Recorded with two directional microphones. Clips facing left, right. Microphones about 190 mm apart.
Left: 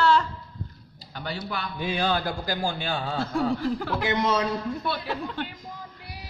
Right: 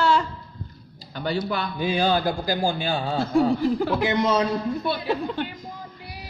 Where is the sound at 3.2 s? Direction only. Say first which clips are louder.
Right 6 dB; 15° right (ahead or behind).